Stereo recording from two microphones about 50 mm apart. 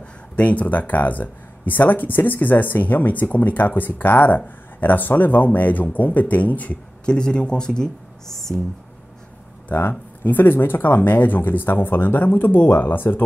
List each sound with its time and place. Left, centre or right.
0.4 s speech: left
7.1 s speech: centre
9.7 s speech: left